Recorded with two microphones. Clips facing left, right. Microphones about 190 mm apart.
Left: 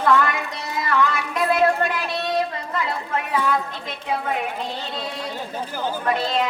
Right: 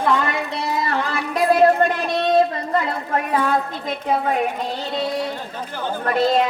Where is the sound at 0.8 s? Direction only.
35° right (ahead or behind).